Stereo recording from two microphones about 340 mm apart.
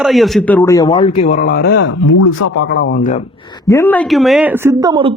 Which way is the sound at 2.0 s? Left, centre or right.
Left.